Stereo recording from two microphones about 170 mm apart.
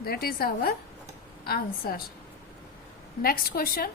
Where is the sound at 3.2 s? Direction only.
60° left (ahead or behind).